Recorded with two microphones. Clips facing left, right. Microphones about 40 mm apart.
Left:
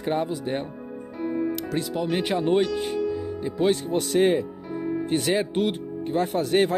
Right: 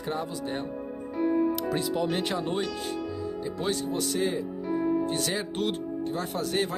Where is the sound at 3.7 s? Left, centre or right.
Left.